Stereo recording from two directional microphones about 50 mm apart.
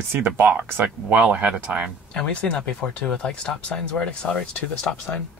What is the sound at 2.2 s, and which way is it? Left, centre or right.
Speech, centre.